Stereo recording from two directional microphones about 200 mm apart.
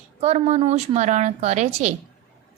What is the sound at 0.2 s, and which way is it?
A woman's voice, 35° right (ahead or behind).